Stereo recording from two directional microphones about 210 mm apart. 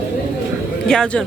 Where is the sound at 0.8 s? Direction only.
5° left (ahead or behind).